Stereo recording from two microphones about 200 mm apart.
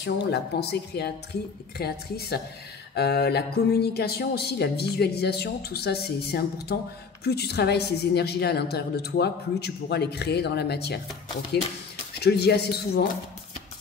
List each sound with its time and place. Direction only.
0.0 s a woman's voice: 55° left (ahead or behind)
12.2 s a woman's voice: 55° left (ahead or behind)